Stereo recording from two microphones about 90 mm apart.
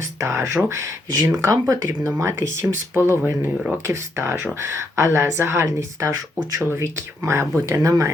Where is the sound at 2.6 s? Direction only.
25° right (ahead or behind).